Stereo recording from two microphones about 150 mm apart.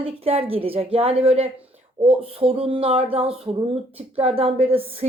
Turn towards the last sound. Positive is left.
turn(degrees=-40)  # may be behind; listen again after turning